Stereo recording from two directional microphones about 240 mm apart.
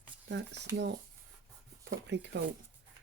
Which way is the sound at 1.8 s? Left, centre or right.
Right.